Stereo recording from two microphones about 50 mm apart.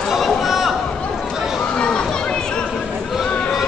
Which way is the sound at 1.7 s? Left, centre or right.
Centre.